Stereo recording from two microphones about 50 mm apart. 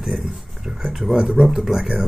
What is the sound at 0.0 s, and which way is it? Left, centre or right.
Speech, centre.